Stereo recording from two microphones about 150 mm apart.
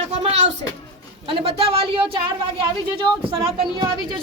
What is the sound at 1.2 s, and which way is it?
Speech, 35° right (ahead or behind).